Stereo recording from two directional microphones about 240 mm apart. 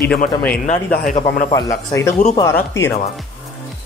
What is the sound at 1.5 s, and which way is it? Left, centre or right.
Speech, centre.